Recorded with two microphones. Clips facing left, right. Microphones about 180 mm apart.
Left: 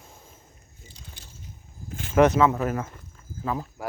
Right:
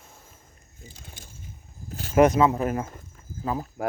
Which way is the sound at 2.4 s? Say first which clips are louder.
Even; 35° right (ahead or behind).